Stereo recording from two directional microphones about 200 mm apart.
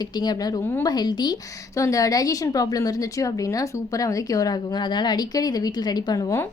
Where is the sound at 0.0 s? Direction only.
20° left (ahead or behind).